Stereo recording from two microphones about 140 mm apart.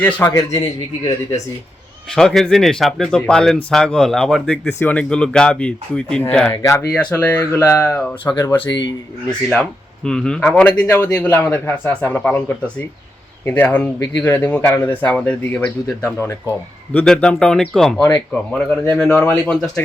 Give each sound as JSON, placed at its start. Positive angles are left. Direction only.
{"t": 0.0, "sound": "a man's voice", "side_deg": 15}
{"t": 2.1, "sound": "speech", "side_deg": 5}
{"t": 7.5, "sound": "a man's voice", "side_deg": 20}
{"t": 7.8, "sound": "speech", "side_deg": 10}
{"t": 19.5, "sound": "speech", "side_deg": 5}